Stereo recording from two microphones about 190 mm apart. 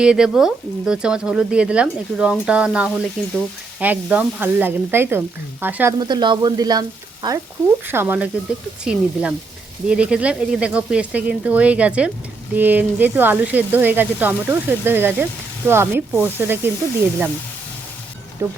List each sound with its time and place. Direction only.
0.0 s speech: 5° right (ahead or behind)
6.0 s speech: 25° right (ahead or behind)
18.4 s speech: 15° right (ahead or behind)